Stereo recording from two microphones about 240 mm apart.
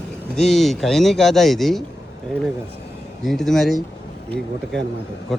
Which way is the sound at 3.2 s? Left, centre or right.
Centre.